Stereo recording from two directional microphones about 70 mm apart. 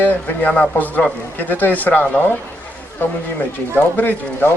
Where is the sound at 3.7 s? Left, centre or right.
Left.